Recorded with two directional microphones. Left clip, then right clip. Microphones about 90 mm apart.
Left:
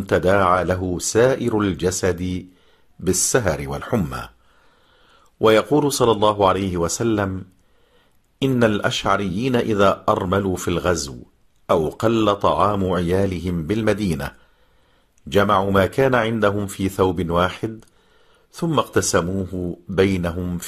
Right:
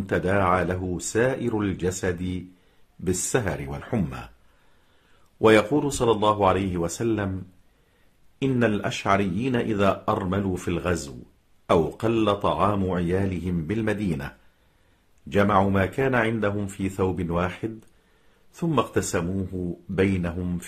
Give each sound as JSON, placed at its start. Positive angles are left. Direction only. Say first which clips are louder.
{"t": 0.0, "sound": "speech", "louder": "left 6 dB", "side_deg": 30}
{"t": 5.4, "sound": "speech", "louder": "left 3 dB", "side_deg": 30}
{"t": 8.4, "sound": "speech", "louder": "left 5 dB", "side_deg": 30}
{"t": 15.2, "sound": "speech", "louder": "left 4 dB", "side_deg": 35}
{"t": 18.8, "sound": "speech", "louder": "left 6 dB", "side_deg": 35}
{"t": 20.3, "sound": "speech", "louder": "left 4 dB", "side_deg": 20}